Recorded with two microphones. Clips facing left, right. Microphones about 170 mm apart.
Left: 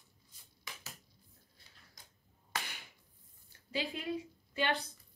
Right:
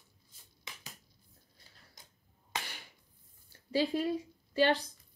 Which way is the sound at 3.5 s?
35° right (ahead or behind).